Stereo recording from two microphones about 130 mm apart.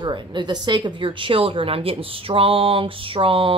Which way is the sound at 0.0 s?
35° right (ahead or behind).